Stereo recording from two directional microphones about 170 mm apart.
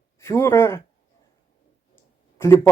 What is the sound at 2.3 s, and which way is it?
Speech, 15° left (ahead or behind).